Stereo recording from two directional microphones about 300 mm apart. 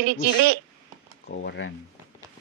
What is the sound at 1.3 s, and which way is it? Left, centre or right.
Speech, left.